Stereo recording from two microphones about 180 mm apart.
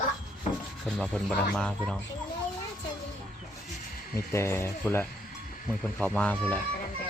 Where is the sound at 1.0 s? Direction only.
Centre (ahead or behind).